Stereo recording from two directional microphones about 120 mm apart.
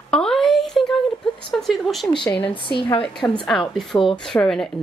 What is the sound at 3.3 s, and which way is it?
Speech, 5° left (ahead or behind).